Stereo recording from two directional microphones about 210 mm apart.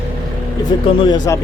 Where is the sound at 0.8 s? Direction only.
25° left (ahead or behind).